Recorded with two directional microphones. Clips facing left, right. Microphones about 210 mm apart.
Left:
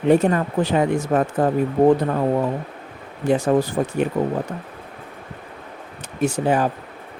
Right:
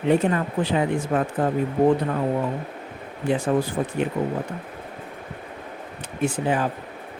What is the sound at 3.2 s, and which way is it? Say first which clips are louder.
Speech: left 4 dB; 40° left (ahead or behind).